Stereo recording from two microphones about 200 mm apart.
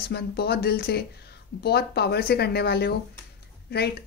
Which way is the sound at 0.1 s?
55° left (ahead or behind).